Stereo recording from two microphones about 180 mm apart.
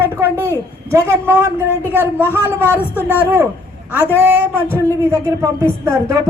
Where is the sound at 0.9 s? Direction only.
15° right (ahead or behind).